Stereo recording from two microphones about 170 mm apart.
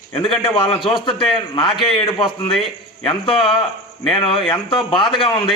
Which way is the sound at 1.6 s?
Centre (ahead or behind).